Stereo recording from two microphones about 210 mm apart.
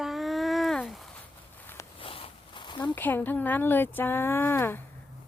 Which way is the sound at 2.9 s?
10° left (ahead or behind).